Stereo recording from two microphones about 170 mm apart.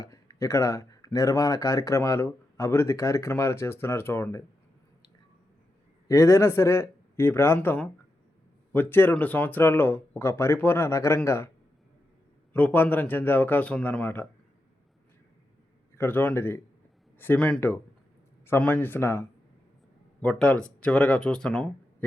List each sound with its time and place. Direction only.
0.0 s speech: 20° left (ahead or behind)
6.1 s speech: 15° left (ahead or behind)
12.5 s speech: 10° left (ahead or behind)
16.0 s speech: 10° left (ahead or behind)
20.2 s speech: 5° left (ahead or behind)